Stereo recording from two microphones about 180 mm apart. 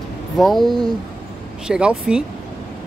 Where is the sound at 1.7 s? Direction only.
5° right (ahead or behind).